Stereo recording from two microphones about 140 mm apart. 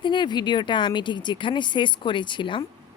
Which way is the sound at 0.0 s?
35° left (ahead or behind).